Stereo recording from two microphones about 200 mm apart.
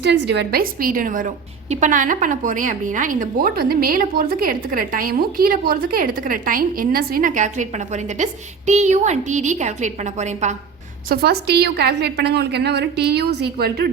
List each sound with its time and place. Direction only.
0.0 s a woman's voice: 55° right (ahead or behind); by 10.5 s 35° right (ahead or behind)
11.1 s a woman's voice: 55° right (ahead or behind)